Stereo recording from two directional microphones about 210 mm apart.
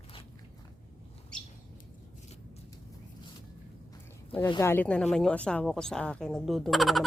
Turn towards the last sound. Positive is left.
turn(degrees=0)  # may be behind; listen again after turning